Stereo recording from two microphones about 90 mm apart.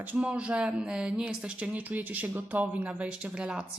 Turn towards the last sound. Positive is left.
turn(degrees=-15)  # may be behind; listen again after turning